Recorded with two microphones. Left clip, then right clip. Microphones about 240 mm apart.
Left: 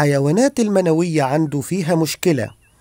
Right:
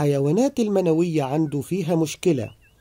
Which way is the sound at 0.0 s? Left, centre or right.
Left.